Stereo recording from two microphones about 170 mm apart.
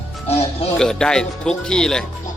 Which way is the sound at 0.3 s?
35° left (ahead or behind).